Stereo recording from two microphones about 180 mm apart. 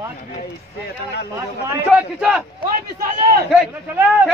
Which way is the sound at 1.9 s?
5° right (ahead or behind).